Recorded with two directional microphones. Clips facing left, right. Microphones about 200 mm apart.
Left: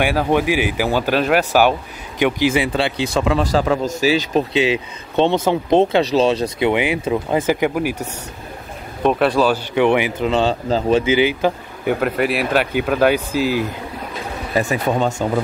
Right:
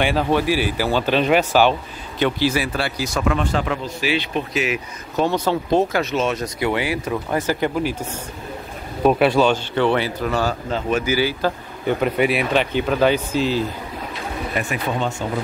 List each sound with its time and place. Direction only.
0.0 s speech: 10° left (ahead or behind); by 6.7 s 30° left (ahead or behind)
6.7 s speech: 20° left (ahead or behind)
9.0 s speech: centre (ahead or behind)
9.8 s speech: 15° left (ahead or behind)
11.8 s speech: 5° left (ahead or behind)
14.5 s speech: 30° left (ahead or behind)
14.9 s speech: 45° left (ahead or behind)